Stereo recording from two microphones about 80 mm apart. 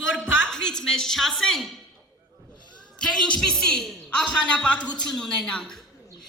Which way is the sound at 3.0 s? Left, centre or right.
Centre.